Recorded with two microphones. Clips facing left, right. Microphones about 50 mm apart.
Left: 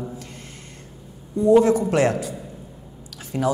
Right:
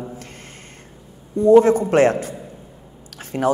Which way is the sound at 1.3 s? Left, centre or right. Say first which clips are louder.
Right 3 dB; right.